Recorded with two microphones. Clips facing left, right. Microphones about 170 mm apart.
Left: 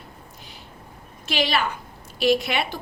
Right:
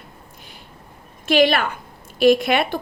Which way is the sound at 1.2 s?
55° right (ahead or behind).